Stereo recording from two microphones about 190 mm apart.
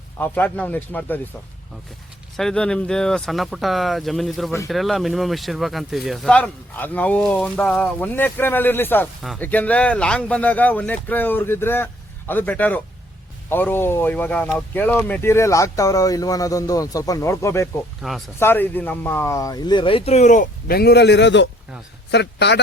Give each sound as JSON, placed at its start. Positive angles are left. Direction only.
{"t": 0.2, "sound": "speech", "side_deg": 10}
{"t": 2.3, "sound": "a man's voice", "side_deg": 5}